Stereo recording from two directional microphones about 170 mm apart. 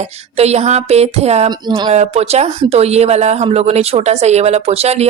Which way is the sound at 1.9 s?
40° right (ahead or behind).